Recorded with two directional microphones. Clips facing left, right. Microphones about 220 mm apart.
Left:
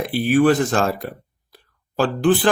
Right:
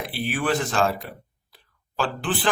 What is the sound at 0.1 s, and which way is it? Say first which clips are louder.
Speech: left 10 dB; 45° left (ahead or behind).